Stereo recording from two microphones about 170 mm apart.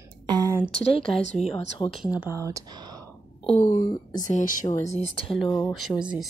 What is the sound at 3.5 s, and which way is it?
Speech, 45° left (ahead or behind).